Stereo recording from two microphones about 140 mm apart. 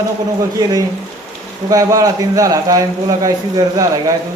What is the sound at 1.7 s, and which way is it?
A man's voice, 25° right (ahead or behind).